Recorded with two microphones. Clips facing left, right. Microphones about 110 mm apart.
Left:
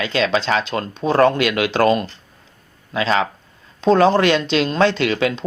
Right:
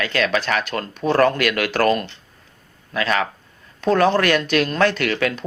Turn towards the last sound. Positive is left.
turn(degrees=20)  # may be behind; listen again after turning